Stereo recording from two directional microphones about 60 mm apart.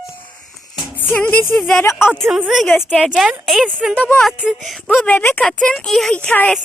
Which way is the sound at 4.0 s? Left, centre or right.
Left.